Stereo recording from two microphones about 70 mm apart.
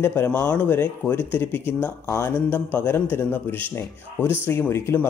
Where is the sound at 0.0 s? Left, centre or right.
Left.